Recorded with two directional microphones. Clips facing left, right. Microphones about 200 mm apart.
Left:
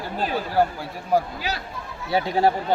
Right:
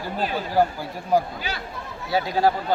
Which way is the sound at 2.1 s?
25° left (ahead or behind).